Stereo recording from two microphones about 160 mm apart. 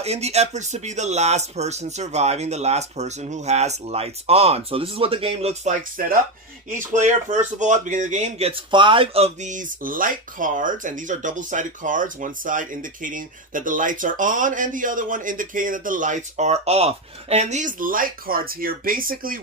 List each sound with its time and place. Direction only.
0.0 s speech: 40° right (ahead or behind)
6.0 s speech: 60° right (ahead or behind)
6.7 s speech: 50° right (ahead or behind)